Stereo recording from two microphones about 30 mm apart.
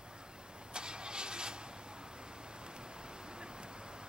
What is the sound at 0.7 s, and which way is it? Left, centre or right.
Vehicle, right.